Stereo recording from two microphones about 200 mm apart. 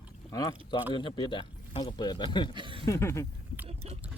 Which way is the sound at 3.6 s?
30° right (ahead or behind).